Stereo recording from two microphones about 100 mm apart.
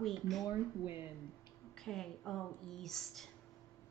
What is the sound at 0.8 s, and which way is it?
Speech, 20° right (ahead or behind).